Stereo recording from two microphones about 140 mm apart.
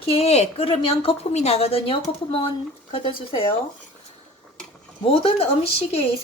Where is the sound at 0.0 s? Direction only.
45° left (ahead or behind).